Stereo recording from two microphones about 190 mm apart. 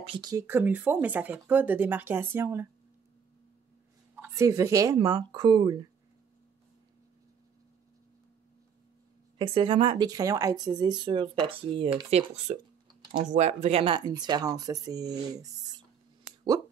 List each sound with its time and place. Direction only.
0.0 s speech: 25° right (ahead or behind)
4.2 s speech: 15° right (ahead or behind)
9.4 s speech: 25° right (ahead or behind)